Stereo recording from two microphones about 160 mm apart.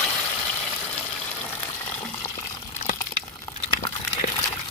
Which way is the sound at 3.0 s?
20° left (ahead or behind).